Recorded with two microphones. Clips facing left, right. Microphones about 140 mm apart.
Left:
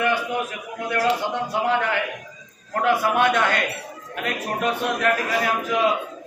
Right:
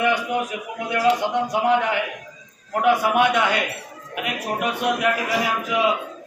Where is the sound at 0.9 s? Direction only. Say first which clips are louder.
Right 2 dB; 15° right (ahead or behind).